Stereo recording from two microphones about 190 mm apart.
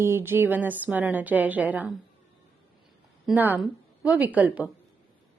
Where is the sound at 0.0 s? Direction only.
10° right (ahead or behind).